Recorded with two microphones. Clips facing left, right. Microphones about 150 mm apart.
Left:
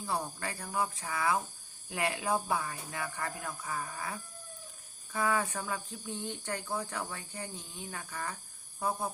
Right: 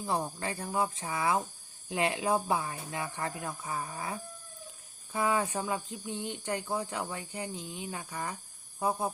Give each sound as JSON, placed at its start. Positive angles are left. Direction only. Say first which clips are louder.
{"t": 0.0, "sound": "speech", "louder": "right 3 dB", "side_deg": -20}